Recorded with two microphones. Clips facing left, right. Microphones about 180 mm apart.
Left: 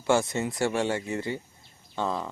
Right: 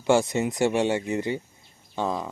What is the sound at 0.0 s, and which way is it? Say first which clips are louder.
Speech: right 3 dB; 20° right (ahead or behind).